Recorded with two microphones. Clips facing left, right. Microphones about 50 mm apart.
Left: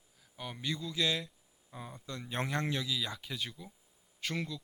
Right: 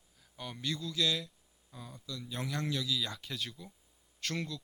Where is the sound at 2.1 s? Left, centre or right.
Left.